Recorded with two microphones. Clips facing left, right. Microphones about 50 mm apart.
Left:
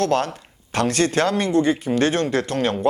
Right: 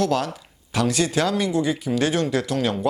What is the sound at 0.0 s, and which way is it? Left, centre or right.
Speech, left.